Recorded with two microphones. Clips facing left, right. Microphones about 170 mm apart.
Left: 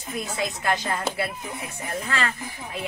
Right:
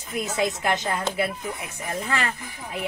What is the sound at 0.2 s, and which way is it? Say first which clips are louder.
Speech: right 5 dB; 20° right (ahead or behind).